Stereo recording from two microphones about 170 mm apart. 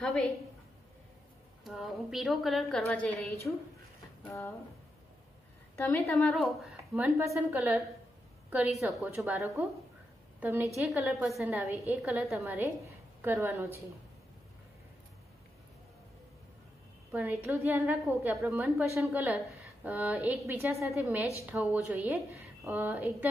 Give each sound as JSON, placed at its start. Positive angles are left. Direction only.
{"t": 0.0, "sound": "speech", "side_deg": 5}
{"t": 1.6, "sound": "a woman's voice", "side_deg": 0}
{"t": 4.3, "sound": "a woman's voice", "side_deg": 15}
{"t": 5.8, "sound": "speech", "side_deg": 10}
{"t": 7.2, "sound": "a woman's voice", "side_deg": -15}
{"t": 17.1, "sound": "a woman's voice", "side_deg": -10}